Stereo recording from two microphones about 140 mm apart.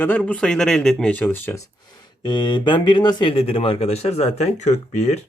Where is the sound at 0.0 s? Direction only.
10° left (ahead or behind); by 5.2 s 50° left (ahead or behind).